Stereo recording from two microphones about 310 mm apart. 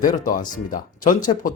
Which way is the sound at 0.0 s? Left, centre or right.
Left.